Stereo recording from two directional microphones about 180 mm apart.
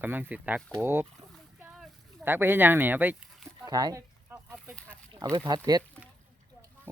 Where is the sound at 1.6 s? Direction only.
10° right (ahead or behind).